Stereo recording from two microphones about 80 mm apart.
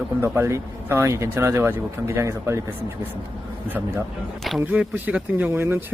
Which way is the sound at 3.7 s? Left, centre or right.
Right.